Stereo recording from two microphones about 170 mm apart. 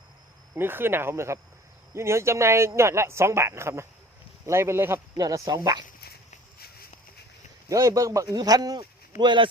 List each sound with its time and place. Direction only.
0.5 s speech: 15° right (ahead or behind)
7.7 s a man's voice: 20° right (ahead or behind)